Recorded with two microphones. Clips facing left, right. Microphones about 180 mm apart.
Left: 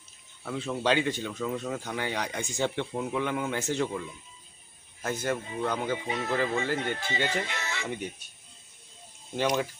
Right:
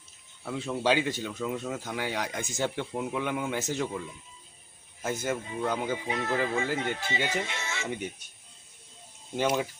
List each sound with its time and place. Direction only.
0.4 s speech: 10° right (ahead or behind)
5.0 s speech: 5° right (ahead or behind)
6.1 s speech: centre (ahead or behind)
6.3 s speech: 10° right (ahead or behind)
7.4 s speech: 25° right (ahead or behind)
9.3 s speech: 10° right (ahead or behind)